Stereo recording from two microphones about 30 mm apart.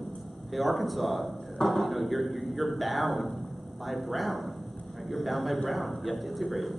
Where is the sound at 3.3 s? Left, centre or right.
Centre.